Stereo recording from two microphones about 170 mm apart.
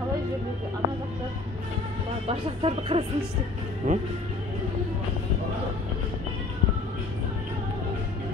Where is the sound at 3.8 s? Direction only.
50° right (ahead or behind).